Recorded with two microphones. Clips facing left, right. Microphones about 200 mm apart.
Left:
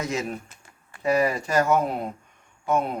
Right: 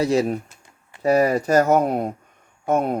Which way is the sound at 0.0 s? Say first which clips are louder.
Right 9 dB; 35° right (ahead or behind).